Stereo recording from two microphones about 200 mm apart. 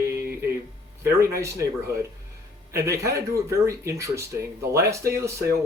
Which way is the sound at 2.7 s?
15° right (ahead or behind).